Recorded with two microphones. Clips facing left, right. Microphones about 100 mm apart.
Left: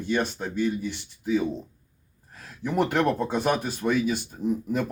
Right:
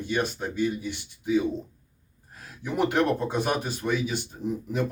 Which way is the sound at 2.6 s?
45° left (ahead or behind).